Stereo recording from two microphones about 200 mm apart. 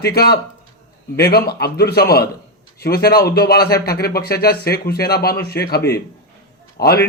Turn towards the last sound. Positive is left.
turn(degrees=50)  # may be behind; listen again after turning